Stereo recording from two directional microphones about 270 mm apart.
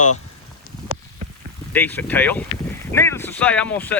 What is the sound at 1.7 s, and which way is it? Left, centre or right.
Speech, centre.